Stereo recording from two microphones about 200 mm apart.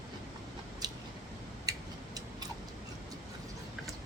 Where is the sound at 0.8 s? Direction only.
20° right (ahead or behind).